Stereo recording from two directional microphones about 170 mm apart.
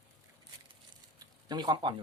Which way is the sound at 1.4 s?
25° right (ahead or behind).